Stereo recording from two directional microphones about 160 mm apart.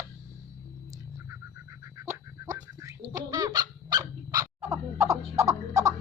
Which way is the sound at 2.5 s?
20° right (ahead or behind).